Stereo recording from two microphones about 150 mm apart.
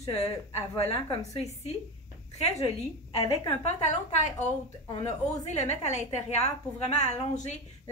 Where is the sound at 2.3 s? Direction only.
45° left (ahead or behind).